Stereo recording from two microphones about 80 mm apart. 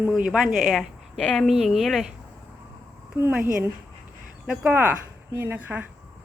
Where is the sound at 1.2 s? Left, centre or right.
Centre.